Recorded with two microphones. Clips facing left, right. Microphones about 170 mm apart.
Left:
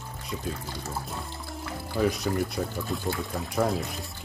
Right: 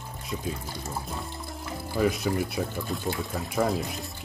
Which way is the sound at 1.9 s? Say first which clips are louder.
Even; 5° right (ahead or behind).